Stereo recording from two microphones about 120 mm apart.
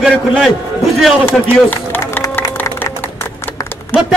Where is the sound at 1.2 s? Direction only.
15° left (ahead or behind).